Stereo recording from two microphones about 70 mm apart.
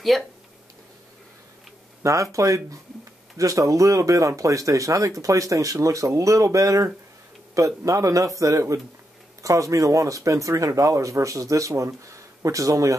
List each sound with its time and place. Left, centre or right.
0.1 s speech: centre
2.3 s speech: right